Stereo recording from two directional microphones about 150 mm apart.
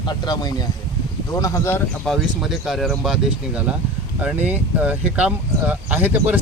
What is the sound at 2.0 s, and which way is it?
Speech, centre (ahead or behind).